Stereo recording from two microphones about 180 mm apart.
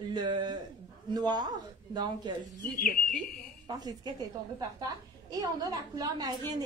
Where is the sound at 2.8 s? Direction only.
50° left (ahead or behind).